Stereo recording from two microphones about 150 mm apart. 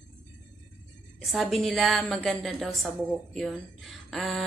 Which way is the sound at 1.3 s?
Centre (ahead or behind).